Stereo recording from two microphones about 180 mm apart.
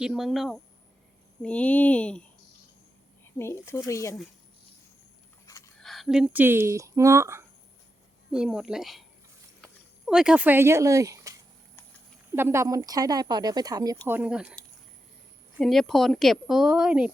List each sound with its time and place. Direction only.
0.0 s a woman's voice: 5° right (ahead or behind); by 4.1 s 15° left (ahead or behind)
5.5 s a sound: 15° left (ahead or behind)
5.8 s speech: centre (ahead or behind); by 7.4 s 15° right (ahead or behind)
8.3 s a woman's voice: 5° right (ahead or behind)
10.1 s speech: 5° right (ahead or behind); by 14.0 s 20° right (ahead or behind)
14.1 s a woman's voice: 5° right (ahead or behind)
15.6 s a woman's voice: centre (ahead or behind)